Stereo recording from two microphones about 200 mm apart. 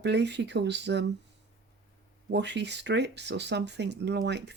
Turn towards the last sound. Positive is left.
turn(degrees=-60)  # may be behind; listen again after turning